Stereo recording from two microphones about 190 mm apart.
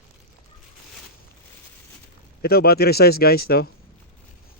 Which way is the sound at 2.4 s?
55° left (ahead or behind).